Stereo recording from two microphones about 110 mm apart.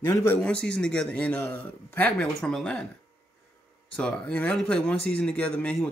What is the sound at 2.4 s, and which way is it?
Speech, 5° left (ahead or behind).